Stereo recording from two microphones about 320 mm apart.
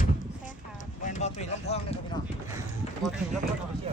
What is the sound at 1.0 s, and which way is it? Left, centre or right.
Speech, left.